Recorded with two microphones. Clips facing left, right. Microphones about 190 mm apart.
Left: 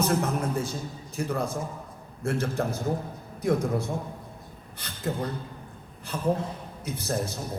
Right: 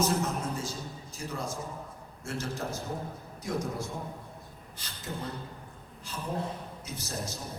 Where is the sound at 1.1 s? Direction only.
60° left (ahead or behind).